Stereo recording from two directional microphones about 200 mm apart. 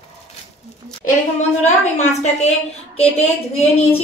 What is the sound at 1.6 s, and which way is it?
A woman's voice, 35° left (ahead or behind).